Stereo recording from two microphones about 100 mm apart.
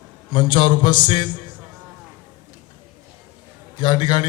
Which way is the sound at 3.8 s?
50° left (ahead or behind).